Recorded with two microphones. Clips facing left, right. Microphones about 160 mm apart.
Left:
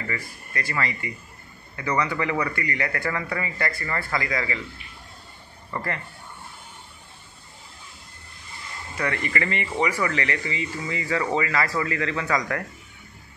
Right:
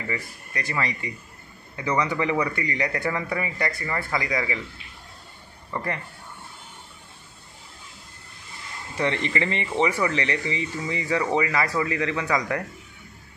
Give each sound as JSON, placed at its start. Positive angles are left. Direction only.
{"t": 0.0, "sound": "speech", "side_deg": -15}
{"t": 5.7, "sound": "speech", "side_deg": -15}
{"t": 8.9, "sound": "speech", "side_deg": -25}